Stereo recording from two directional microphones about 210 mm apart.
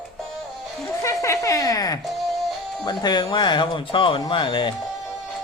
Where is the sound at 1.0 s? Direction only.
15° left (ahead or behind).